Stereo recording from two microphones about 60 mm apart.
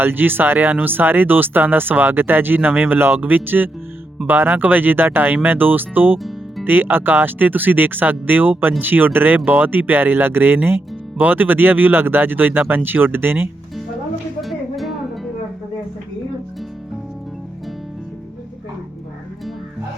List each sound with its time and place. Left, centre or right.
0.0 s speech: right
14.4 s music: centre